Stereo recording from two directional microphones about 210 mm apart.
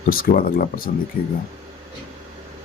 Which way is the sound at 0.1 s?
45° left (ahead or behind).